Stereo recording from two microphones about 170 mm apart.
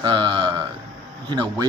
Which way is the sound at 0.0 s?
30° right (ahead or behind).